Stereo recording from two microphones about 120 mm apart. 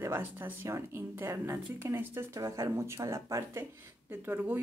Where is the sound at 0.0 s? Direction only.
20° right (ahead or behind).